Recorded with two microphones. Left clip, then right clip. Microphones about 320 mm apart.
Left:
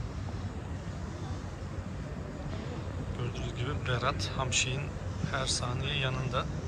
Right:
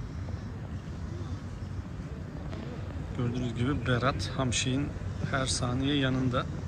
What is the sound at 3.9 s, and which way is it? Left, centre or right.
Speech, centre.